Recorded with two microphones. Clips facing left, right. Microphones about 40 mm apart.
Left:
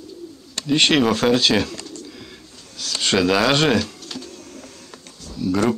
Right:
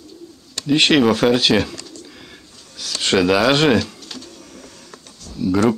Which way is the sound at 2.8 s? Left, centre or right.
Centre.